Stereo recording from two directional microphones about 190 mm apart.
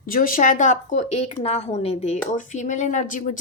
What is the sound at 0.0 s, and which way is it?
A woman's voice, 45° left (ahead or behind).